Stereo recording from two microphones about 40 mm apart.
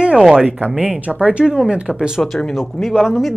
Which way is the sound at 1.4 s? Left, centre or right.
Centre.